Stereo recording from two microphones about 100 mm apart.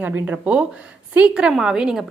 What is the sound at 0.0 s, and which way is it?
A woman's voice, 15° right (ahead or behind).